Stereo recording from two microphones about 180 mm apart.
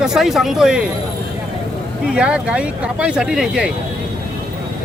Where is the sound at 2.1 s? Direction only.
5° right (ahead or behind).